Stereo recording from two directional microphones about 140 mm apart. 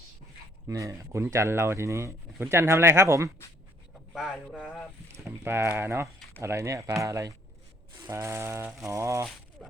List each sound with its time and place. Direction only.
0.7 s speech: 25° right (ahead or behind)
4.1 s speech: 5° left (ahead or behind)
5.4 s speech: 15° right (ahead or behind)
9.6 s speech: centre (ahead or behind)